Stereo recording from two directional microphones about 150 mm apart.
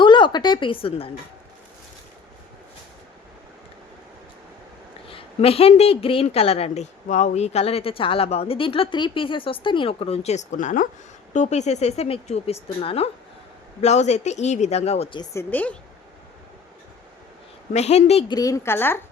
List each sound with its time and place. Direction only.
0.0 s a woman's voice: 30° left (ahead or behind)
5.0 s a woman's voice: 40° left (ahead or behind)
15.2 s speech: 20° left (ahead or behind)
17.7 s speech: 45° left (ahead or behind)
18.3 s speech: 25° left (ahead or behind)